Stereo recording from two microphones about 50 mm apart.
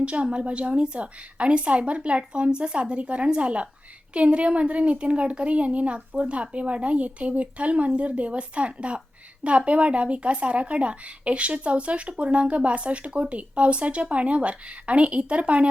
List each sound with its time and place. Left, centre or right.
0.0 s speech: right